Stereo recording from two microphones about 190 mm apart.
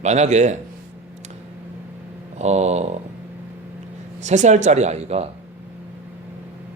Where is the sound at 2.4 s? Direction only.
35° right (ahead or behind).